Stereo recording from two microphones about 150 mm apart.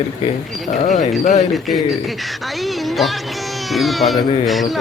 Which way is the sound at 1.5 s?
Centre (ahead or behind).